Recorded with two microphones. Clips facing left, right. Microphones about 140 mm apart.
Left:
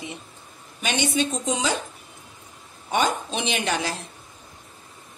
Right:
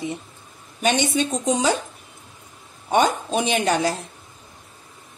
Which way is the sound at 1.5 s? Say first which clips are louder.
Right 5 dB; 40° right (ahead or behind).